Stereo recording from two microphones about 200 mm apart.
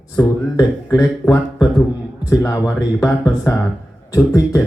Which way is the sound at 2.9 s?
15° left (ahead or behind).